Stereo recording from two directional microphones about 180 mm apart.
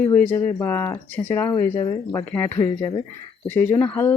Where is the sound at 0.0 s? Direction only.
10° left (ahead or behind).